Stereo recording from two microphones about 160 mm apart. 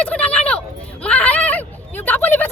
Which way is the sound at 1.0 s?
10° left (ahead or behind).